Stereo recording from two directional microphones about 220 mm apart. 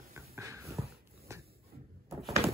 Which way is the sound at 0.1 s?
15° right (ahead or behind).